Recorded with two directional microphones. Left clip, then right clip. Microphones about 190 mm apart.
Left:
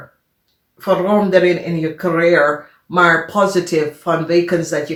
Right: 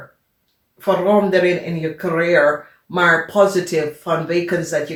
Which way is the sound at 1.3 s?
30° left (ahead or behind).